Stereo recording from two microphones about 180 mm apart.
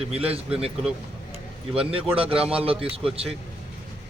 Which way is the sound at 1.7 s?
30° right (ahead or behind).